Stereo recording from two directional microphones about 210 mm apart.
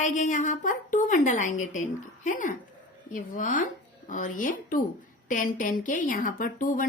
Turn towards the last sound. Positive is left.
turn(degrees=40)  # may be behind; listen again after turning